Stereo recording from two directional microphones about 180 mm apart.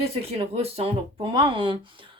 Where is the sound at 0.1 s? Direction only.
35° right (ahead or behind).